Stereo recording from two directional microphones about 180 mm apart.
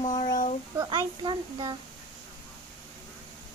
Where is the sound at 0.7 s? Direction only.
25° right (ahead or behind).